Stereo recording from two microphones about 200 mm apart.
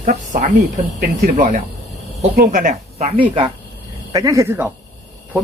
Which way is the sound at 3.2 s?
25° right (ahead or behind).